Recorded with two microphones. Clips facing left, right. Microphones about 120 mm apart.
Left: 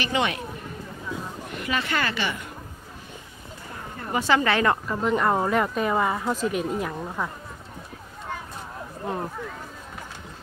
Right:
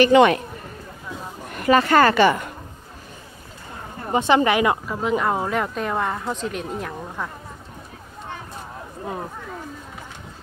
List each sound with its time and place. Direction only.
0.0 s speech: 55° right (ahead or behind)
1.5 s speech: 45° right (ahead or behind)
4.0 s speech: 25° right (ahead or behind); by 7.2 s centre (ahead or behind)